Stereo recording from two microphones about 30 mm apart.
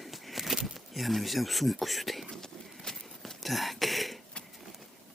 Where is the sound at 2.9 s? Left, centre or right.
Left.